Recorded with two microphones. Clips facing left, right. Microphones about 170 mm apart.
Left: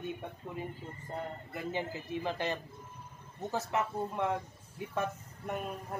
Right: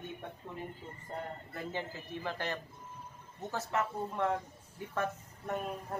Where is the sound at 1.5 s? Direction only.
15° left (ahead or behind).